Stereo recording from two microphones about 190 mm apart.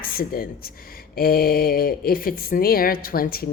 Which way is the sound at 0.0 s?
50° left (ahead or behind).